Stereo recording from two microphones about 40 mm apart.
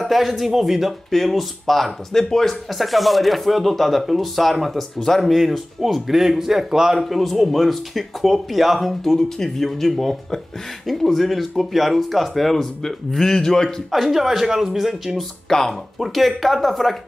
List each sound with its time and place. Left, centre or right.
0.0 s speech: centre
13.9 s speech: centre
15.4 s speech: centre
16.0 s speech: centre